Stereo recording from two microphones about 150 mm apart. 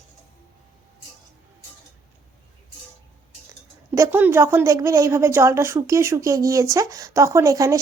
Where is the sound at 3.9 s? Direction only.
15° right (ahead or behind).